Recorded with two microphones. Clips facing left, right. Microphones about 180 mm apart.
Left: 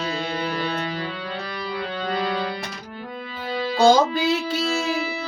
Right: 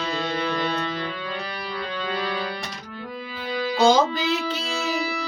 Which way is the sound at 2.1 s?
30° left (ahead or behind).